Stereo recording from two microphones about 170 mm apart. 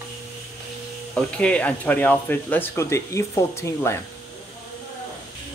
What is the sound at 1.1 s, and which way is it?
Speech, 5° left (ahead or behind).